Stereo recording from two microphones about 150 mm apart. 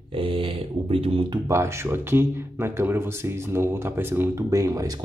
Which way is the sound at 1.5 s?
20° right (ahead or behind).